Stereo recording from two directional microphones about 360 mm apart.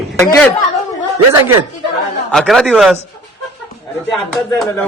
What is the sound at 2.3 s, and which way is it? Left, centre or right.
Speech, centre.